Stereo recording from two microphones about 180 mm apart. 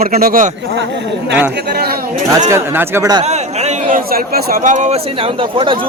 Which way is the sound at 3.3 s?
40° right (ahead or behind).